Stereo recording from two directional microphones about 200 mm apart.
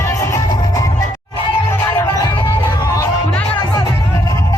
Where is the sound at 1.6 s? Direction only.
15° left (ahead or behind).